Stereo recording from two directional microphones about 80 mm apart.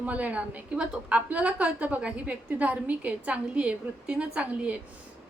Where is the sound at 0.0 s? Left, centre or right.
Centre.